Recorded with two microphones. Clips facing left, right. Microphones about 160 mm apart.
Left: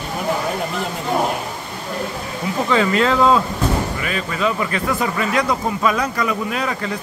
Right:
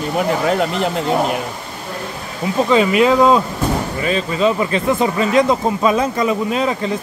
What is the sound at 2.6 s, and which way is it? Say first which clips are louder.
Speech: right 4 dB; 15° right (ahead or behind).